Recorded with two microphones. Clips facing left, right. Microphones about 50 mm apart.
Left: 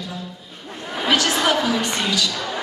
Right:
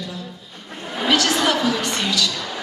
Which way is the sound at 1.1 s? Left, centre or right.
Centre.